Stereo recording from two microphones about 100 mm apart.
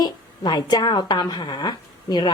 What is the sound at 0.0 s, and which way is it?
Speech, 45° left (ahead or behind).